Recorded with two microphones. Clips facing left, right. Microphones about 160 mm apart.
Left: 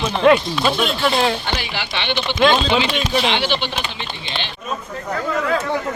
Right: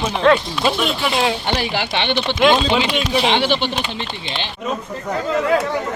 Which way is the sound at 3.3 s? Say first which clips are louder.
Right 3 dB; 50° right (ahead or behind).